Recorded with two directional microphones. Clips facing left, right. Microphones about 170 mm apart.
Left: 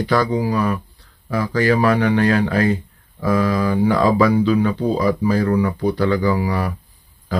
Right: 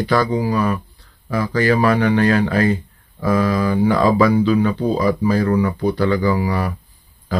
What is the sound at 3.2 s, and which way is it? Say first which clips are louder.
Speech: right 1 dB; 5° right (ahead or behind).